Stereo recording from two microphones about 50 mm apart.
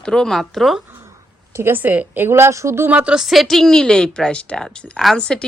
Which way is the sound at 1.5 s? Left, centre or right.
Right.